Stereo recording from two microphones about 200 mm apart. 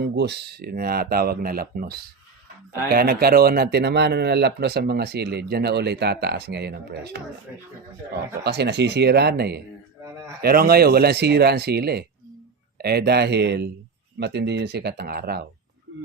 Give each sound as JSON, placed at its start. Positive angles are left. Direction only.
{"t": 0.0, "sound": "speech", "side_deg": -55}
{"t": 8.4, "sound": "speech", "side_deg": -55}